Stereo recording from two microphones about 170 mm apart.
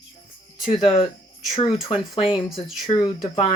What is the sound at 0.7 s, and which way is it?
Speech, 30° left (ahead or behind).